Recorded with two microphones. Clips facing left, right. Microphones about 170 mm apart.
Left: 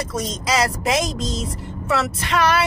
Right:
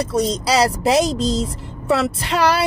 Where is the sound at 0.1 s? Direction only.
35° right (ahead or behind).